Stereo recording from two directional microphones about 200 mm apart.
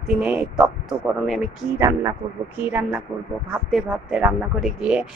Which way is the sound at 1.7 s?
15° right (ahead or behind).